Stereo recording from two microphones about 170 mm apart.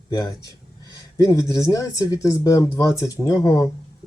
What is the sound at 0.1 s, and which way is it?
Speech, 20° left (ahead or behind).